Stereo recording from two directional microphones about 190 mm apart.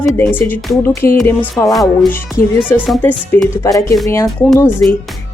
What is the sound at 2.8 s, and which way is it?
Speech, centre (ahead or behind).